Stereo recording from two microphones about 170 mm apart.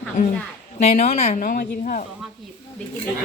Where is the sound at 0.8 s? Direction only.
40° left (ahead or behind).